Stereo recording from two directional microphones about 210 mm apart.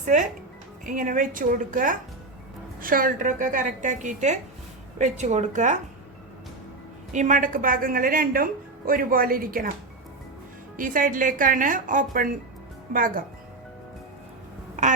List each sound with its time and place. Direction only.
0.9 s a woman's voice: 40° right (ahead or behind)
7.1 s a woman's voice: 35° right (ahead or behind)
10.8 s a woman's voice: 40° right (ahead or behind)
14.8 s speech: 35° right (ahead or behind)